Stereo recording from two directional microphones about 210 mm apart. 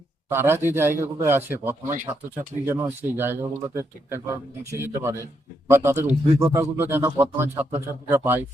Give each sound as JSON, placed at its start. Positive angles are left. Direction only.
{"t": 0.3, "sound": "speech", "side_deg": -10}
{"t": 1.9, "sound": "speech", "side_deg": -40}
{"t": 2.6, "sound": "speech", "side_deg": -10}